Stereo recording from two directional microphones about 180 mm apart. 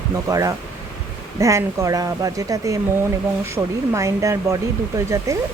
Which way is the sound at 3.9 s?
15° right (ahead or behind).